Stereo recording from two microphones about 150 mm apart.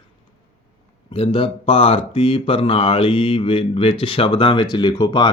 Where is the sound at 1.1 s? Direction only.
40° left (ahead or behind).